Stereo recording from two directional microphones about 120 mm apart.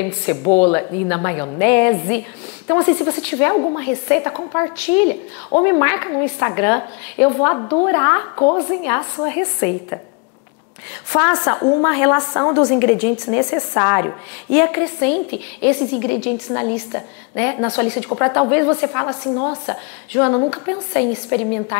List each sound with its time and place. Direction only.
0.0 s a woman's voice: 20° left (ahead or behind)
11.1 s a woman's voice: 20° left (ahead or behind)